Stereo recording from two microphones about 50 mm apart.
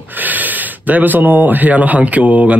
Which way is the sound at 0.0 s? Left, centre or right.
Right.